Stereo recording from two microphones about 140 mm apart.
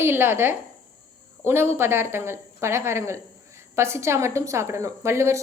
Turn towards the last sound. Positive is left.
turn(degrees=-20)  # may be behind; listen again after turning